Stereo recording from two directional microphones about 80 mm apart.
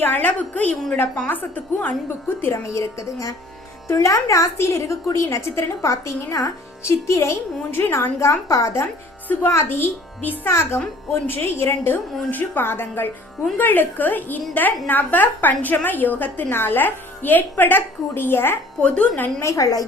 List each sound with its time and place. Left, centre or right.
0.0 s a woman's voice: left
9.3 s a woman's voice: left
18.8 s speech: centre
19.4 s a woman's voice: left